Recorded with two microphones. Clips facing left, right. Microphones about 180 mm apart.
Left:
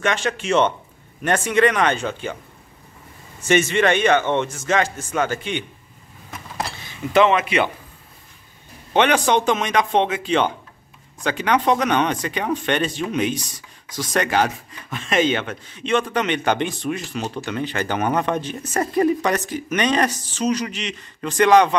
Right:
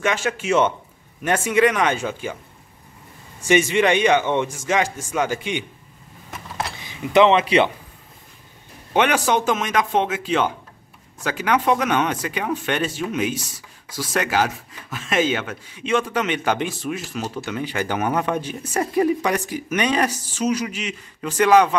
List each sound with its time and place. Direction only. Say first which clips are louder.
0.0 s speech: even; 10° right (ahead or behind)
3.3 s speech: right 1 dB; 10° right (ahead or behind)
6.8 s speech: right 1 dB; 15° right (ahead or behind)
8.9 s speech: left 2 dB; 5° right (ahead or behind)